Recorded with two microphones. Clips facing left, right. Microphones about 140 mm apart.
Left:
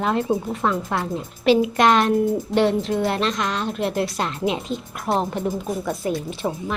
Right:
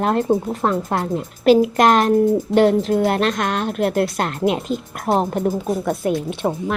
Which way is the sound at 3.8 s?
Centre (ahead or behind).